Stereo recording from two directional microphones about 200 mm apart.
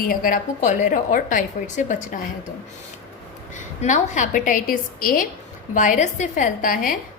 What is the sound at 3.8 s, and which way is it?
A woman's voice, 35° left (ahead or behind).